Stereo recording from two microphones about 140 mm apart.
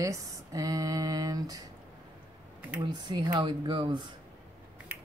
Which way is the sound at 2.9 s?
30° right (ahead or behind).